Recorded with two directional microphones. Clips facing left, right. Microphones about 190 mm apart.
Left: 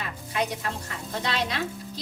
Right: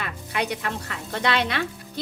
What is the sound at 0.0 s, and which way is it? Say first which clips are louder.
Speech: right 1 dB; 70° right (ahead or behind).